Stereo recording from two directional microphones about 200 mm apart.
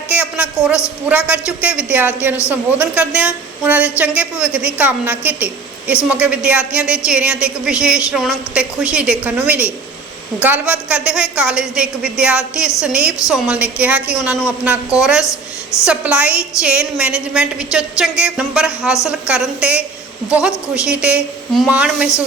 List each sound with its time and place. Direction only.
0.1 s a sound: 5° right (ahead or behind)
1.0 s a woman's voice: 5° right (ahead or behind)
15.2 s a woman's voice: 15° left (ahead or behind)
15.9 s a woman's voice: 5° right (ahead or behind)